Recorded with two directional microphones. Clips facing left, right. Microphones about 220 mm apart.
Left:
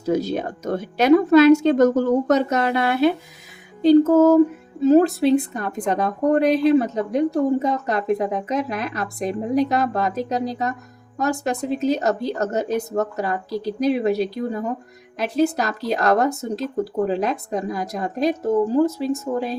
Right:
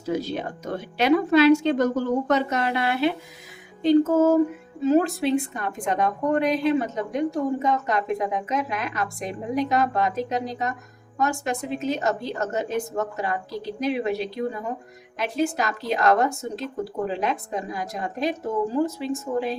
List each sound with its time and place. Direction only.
0.0 s a woman's voice: 40° left (ahead or behind)
4.8 s speech: 40° left (ahead or behind)